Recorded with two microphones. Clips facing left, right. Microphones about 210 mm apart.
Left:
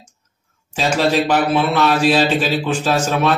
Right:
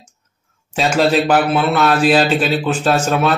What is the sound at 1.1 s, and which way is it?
A man's voice, centre (ahead or behind).